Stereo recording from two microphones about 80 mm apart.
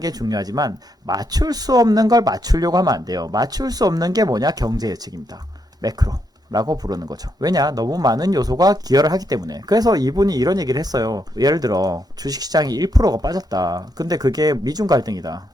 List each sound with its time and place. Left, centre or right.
0.0 s speech: right